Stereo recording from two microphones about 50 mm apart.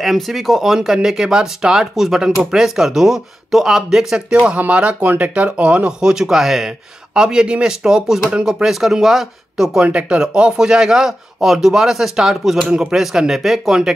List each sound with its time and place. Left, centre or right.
0.0 s speech: centre
0.7 s speech: centre
4.6 s speech: right
5.0 s speech: right
5.3 s speech: right; by 9.7 s centre
9.8 s speech: right